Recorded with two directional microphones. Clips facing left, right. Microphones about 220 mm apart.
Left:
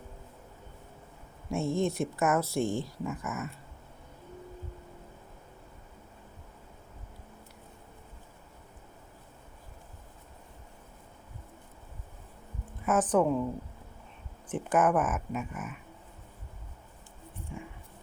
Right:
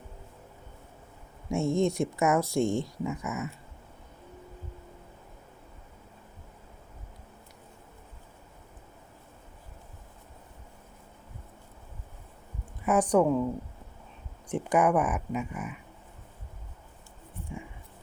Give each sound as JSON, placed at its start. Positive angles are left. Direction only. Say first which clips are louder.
{"t": 1.5, "sound": "speech", "louder": "right 3 dB", "side_deg": -15}
{"t": 12.8, "sound": "a sound", "louder": "right 2 dB", "side_deg": 0}
{"t": 13.1, "sound": "speech", "louder": "right 3 dB", "side_deg": -10}
{"t": 14.5, "sound": "speech", "louder": "right 2 dB", "side_deg": -15}
{"t": 14.9, "sound": "speech", "louder": "right 2 dB", "side_deg": 0}